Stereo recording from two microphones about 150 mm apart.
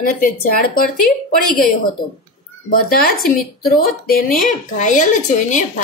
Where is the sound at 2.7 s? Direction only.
80° left.